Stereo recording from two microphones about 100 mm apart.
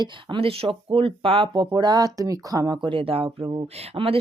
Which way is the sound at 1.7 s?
45° right (ahead or behind).